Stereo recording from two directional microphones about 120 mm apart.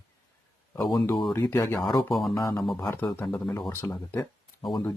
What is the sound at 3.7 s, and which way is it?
Speech, 20° left (ahead or behind).